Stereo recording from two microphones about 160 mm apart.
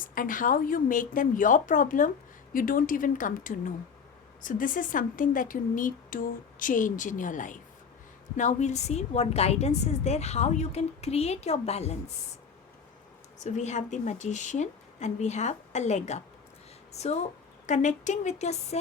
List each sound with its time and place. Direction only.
0.1 s a woman's voice: 55° left (ahead or behind)
13.4 s a woman's voice: 50° left (ahead or behind)